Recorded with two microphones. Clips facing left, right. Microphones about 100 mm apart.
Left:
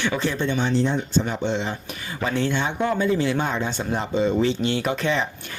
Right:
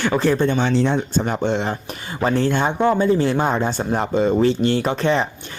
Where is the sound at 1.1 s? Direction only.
50° right (ahead or behind).